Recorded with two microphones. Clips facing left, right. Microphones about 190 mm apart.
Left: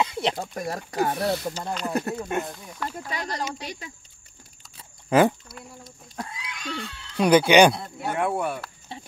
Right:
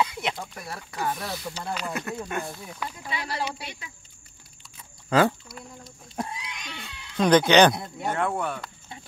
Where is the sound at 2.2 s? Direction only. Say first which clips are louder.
Left 4 dB; 25° left (ahead or behind).